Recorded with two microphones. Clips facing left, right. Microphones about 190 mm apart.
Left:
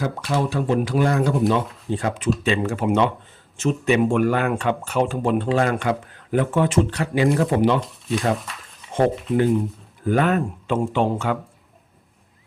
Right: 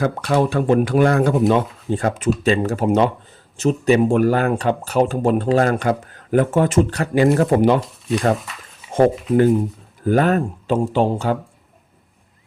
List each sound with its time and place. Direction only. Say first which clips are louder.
0.0 s speech: right 5 dB; 60° right (ahead or behind)
7.8 s speech: right 3 dB; centre (ahead or behind)
8.4 s a sound: right 1 dB; centre (ahead or behind)
9.3 s speech: right 4 dB; 40° right (ahead or behind)